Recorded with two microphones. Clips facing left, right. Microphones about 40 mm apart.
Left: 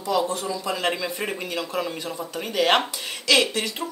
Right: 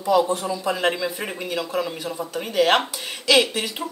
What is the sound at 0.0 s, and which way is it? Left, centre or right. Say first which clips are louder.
Speech: right 4 dB; centre.